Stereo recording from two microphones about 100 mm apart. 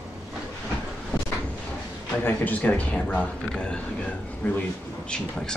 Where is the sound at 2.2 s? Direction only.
20° left (ahead or behind).